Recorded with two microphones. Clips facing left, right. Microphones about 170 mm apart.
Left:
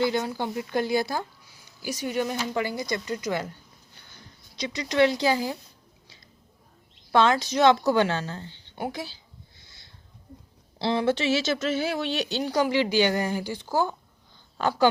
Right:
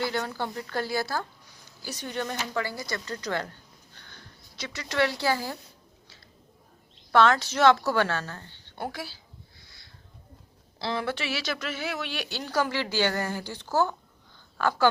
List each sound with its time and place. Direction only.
0.0 s speech: 15° left (ahead or behind)
7.1 s speech: 15° left (ahead or behind)
9.6 s a sound: 25° left (ahead or behind)
10.8 s speech: 25° left (ahead or behind)